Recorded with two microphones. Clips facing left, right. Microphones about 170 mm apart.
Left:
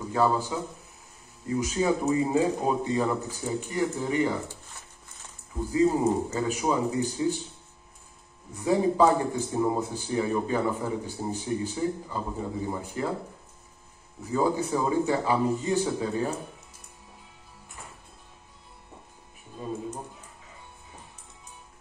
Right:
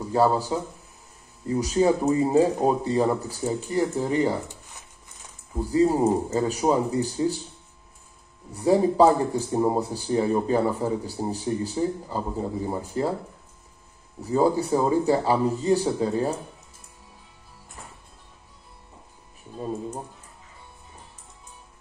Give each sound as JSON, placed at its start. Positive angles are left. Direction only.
{"t": 0.1, "sound": "a man's voice", "side_deg": -35}
{"t": 5.6, "sound": "a man's voice", "side_deg": -35}
{"t": 8.5, "sound": "a man's voice", "side_deg": -35}
{"t": 14.3, "sound": "a man's voice", "side_deg": -35}